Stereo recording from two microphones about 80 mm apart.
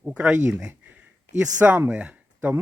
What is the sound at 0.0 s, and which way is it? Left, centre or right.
Speech, centre.